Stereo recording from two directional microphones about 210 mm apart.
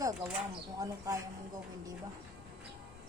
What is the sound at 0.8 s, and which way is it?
Speech, 15° right (ahead or behind).